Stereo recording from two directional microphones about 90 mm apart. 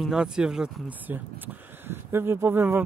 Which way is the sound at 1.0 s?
20° right (ahead or behind).